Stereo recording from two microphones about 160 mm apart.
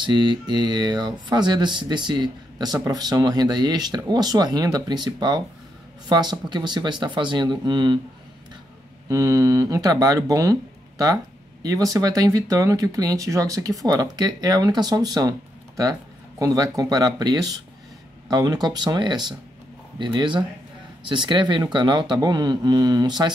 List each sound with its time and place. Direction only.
0.0 s speech: 30° right (ahead or behind)
9.1 s speech: 20° right (ahead or behind)